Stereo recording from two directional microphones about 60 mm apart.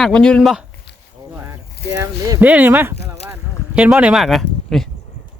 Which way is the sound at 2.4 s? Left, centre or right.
Right.